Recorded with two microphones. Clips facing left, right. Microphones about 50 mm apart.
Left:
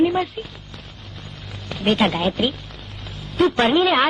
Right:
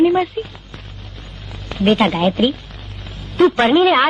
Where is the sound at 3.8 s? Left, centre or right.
Centre.